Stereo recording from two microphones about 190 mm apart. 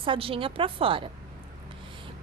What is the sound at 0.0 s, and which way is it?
A woman's voice, 30° right (ahead or behind).